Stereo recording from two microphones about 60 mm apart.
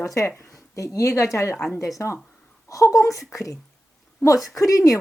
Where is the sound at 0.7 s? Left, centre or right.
Left.